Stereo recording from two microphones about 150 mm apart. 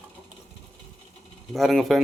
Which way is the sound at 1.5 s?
Centre (ahead or behind).